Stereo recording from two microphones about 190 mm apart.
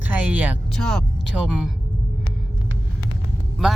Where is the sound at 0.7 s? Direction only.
5° left (ahead or behind).